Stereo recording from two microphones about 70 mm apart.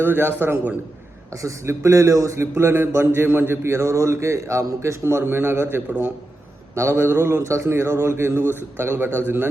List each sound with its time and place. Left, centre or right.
0.0 s speech: right
1.4 s a man's voice: right